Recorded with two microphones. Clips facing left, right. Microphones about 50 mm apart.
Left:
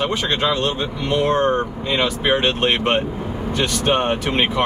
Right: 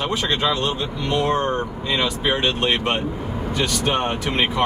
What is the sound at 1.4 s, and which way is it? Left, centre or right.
A man's voice, left.